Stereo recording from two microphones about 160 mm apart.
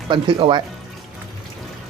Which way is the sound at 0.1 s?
30° right (ahead or behind).